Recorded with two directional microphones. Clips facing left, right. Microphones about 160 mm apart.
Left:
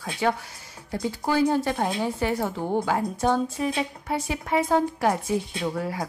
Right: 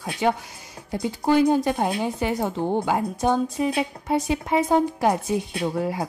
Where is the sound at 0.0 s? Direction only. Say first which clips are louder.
Right 2 dB; 15° right (ahead or behind).